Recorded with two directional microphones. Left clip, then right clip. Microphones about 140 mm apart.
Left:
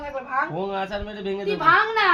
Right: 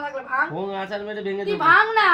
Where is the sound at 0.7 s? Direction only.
35° left (ahead or behind).